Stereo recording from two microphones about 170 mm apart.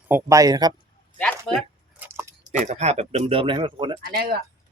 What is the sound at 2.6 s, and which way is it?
Speech, 40° right (ahead or behind).